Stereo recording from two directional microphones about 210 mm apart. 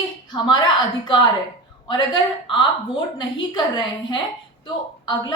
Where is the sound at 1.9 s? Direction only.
20° left (ahead or behind).